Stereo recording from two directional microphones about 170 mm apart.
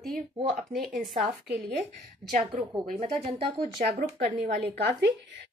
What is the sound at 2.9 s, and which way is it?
Speech, 35° right (ahead or behind).